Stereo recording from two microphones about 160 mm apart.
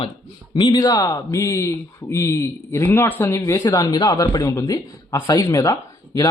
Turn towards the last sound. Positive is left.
turn(degrees=20)  # may be behind; listen again after turning